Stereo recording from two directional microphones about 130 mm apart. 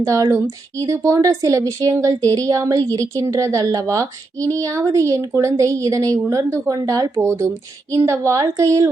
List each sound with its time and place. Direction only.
0.0 s speech: 25° right (ahead or behind)